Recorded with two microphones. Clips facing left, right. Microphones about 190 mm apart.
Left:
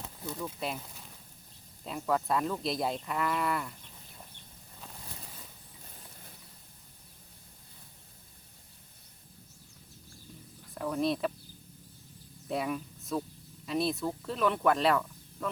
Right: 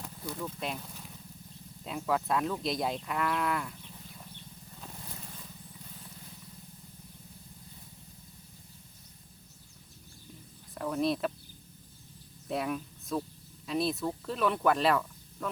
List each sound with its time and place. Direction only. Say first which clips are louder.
0.3 s speech: left 1 dB; centre (ahead or behind)
10.8 s speech: even; centre (ahead or behind)
12.5 s speech: even; centre (ahead or behind)